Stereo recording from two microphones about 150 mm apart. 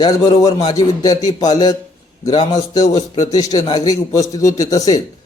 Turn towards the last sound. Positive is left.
turn(degrees=25)  # may be behind; listen again after turning